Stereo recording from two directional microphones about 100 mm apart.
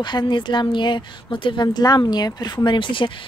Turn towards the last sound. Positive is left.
turn(degrees=55)  # may be behind; listen again after turning